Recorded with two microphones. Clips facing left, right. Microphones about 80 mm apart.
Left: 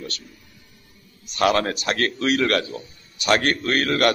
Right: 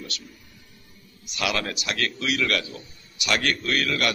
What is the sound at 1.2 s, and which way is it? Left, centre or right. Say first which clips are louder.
A man's voice: left 8 dB; left.